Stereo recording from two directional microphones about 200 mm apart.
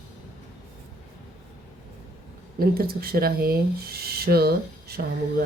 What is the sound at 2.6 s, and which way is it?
Speech, 50° right (ahead or behind).